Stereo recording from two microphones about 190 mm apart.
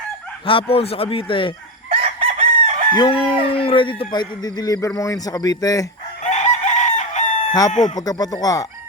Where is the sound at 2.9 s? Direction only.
25° left (ahead or behind).